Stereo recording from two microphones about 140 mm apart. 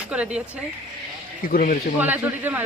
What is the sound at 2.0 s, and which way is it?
Speech, 15° right (ahead or behind).